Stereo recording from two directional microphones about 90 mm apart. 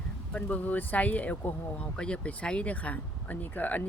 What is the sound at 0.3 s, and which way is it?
Speech, 15° left (ahead or behind).